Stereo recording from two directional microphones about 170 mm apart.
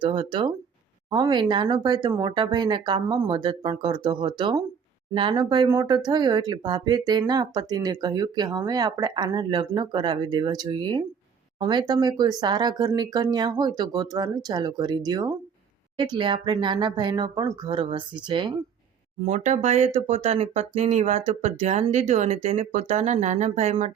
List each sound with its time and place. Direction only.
0.0 s speech: 30° right (ahead or behind)
19.2 s speech: 45° right (ahead or behind)